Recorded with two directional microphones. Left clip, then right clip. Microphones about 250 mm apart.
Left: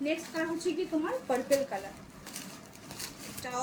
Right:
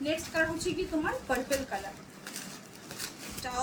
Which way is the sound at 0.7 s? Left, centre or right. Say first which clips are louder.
Left 1 dB; right.